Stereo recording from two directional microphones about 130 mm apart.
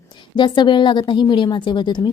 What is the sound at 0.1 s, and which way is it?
A woman's voice, 35° left (ahead or behind).